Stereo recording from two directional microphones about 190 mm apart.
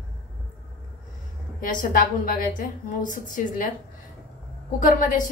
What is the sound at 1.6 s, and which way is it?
A woman's voice, 45° left (ahead or behind).